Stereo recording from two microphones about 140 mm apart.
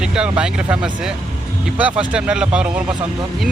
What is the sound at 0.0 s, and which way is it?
Speech, 5° right (ahead or behind).